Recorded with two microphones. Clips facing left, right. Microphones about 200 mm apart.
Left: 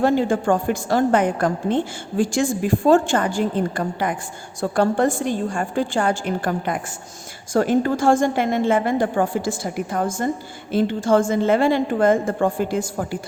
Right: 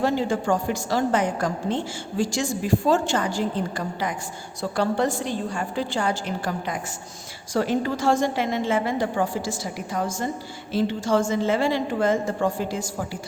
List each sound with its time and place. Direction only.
0.0 s a woman's voice: 55° left (ahead or behind)